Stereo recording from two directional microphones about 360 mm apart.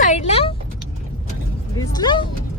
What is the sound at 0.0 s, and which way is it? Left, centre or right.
Vehicle, centre.